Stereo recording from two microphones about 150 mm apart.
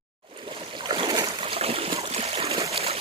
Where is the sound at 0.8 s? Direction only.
35° right (ahead or behind).